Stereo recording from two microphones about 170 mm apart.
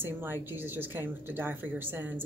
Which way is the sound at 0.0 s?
10° right (ahead or behind).